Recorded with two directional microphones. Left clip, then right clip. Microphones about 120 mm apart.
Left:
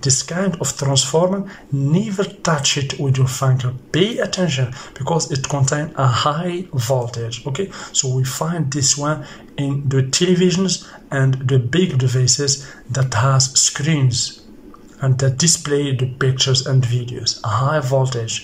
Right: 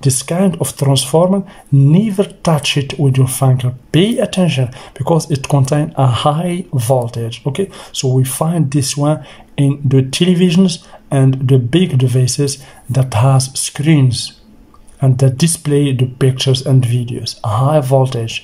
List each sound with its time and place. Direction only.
0.0 s speech: 35° right (ahead or behind)